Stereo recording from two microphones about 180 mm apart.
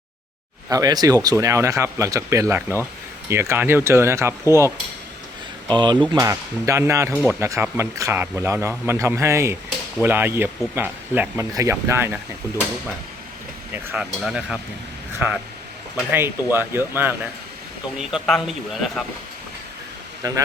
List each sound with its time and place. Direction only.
0.7 s speech: 20° right (ahead or behind)
7.1 s a man's voice: 5° left (ahead or behind)
7.3 s speech: 15° right (ahead or behind)
13.7 s a man's voice: 10° right (ahead or behind)
16.0 s a man's voice: 10° right (ahead or behind)
20.2 s speech: 20° right (ahead or behind)